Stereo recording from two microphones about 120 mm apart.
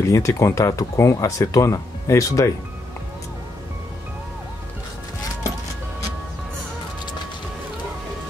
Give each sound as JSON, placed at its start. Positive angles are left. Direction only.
{"t": 0.1, "sound": "speech", "side_deg": 25}